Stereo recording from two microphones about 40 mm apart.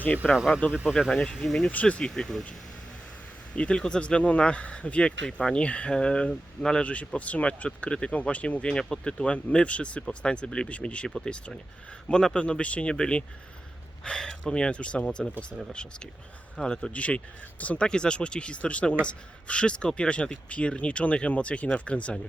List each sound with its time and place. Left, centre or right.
0.2 s speech: centre
0.6 s speech: left
1.1 s speech: centre
1.7 s speech: left
2.0 s speech: centre
3.5 s speech: left
3.8 s speech: left
4.0 s speech: left; by 6.8 s centre
6.8 s speech: left
8.7 s speech: centre
10.7 s speech: left
12.1 s speech: centre
16.9 s speech: left
17.8 s speech: left